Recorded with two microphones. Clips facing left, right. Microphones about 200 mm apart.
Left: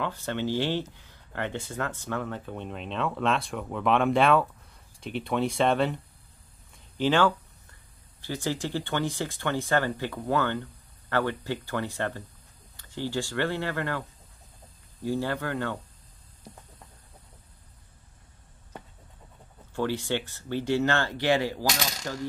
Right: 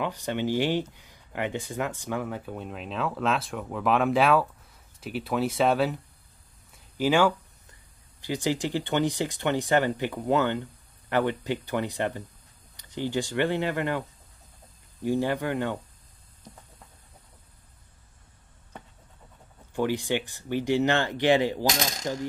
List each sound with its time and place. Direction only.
0.0 s speech: 15° right (ahead or behind)
7.0 s speech: 10° right (ahead or behind)
19.7 s speech: 15° right (ahead or behind)